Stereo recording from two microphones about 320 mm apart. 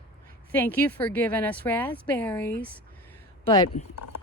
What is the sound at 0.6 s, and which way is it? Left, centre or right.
Speech, centre.